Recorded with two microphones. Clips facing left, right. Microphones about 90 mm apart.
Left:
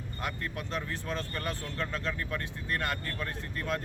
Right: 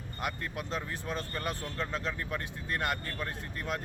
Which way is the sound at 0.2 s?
15° right (ahead or behind).